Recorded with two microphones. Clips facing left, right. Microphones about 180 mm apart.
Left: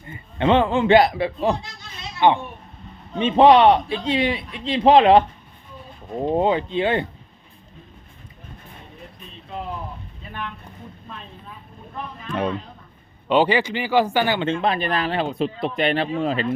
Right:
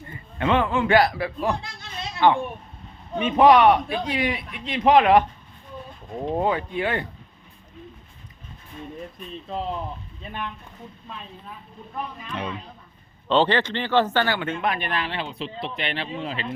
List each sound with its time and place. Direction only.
0.1 s a man's voice: 25° left (ahead or behind)
6.2 s a man's voice: 25° left (ahead or behind)
13.2 s speech: 10° left (ahead or behind)
14.3 s speech: 25° left (ahead or behind); by 16.5 s 45° left (ahead or behind)